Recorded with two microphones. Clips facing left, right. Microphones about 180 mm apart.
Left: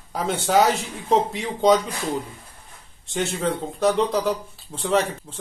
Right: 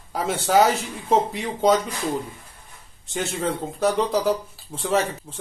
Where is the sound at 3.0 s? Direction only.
Centre (ahead or behind).